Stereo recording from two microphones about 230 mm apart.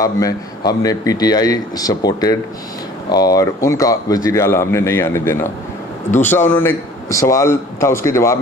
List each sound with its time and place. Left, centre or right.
0.0 s speech: centre